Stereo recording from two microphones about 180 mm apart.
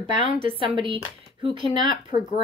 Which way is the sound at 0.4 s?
30° right (ahead or behind).